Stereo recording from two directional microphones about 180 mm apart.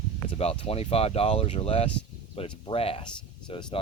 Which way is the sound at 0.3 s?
35° left (ahead or behind).